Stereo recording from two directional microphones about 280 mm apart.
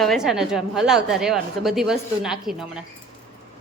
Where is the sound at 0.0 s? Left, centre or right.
Centre.